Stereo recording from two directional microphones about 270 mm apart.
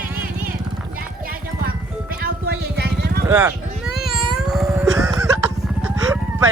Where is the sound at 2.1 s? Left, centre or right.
Right.